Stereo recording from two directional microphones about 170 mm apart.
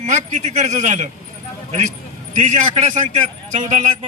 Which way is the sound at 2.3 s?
45° right (ahead or behind).